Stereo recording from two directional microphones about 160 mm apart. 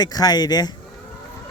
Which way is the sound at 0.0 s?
25° left (ahead or behind).